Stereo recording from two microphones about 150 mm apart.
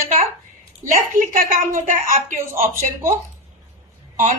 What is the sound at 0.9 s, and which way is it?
A woman's voice, 65° right (ahead or behind).